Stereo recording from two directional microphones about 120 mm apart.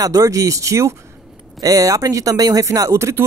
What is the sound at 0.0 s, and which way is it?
Speech, 30° right (ahead or behind).